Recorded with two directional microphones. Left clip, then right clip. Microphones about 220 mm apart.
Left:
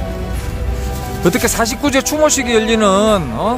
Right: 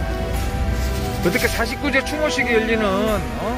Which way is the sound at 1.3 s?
35° left (ahead or behind).